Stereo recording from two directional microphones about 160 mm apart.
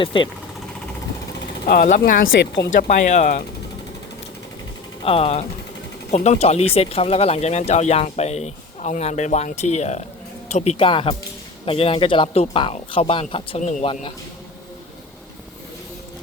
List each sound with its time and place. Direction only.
0.0 s speech: 30° left (ahead or behind)
1.6 s speech: 60° left (ahead or behind); by 2.6 s 75° left (ahead or behind)
2.6 s speech: 45° left (ahead or behind)
5.0 s speech: 40° left (ahead or behind)
13.6 s speech: 50° left (ahead or behind)
13.8 s speech: 35° left (ahead or behind)